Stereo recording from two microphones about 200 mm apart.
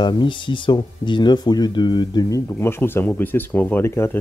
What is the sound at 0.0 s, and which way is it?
Speech, 25° left (ahead or behind).